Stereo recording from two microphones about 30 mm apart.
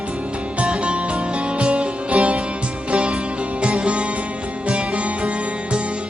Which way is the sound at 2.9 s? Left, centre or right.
Right.